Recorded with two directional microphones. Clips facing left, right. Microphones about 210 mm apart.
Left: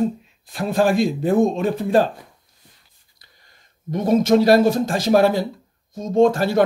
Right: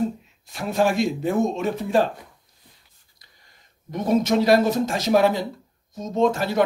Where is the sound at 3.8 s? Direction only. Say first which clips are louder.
Left 4 dB; 30° left (ahead or behind).